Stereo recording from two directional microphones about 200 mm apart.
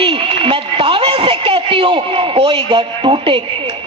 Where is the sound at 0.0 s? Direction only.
25° right (ahead or behind).